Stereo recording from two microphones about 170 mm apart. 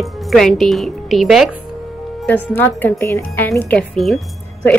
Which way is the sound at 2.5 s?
10° left (ahead or behind).